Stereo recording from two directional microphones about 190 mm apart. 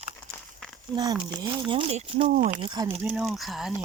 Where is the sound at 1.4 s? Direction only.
25° right (ahead or behind).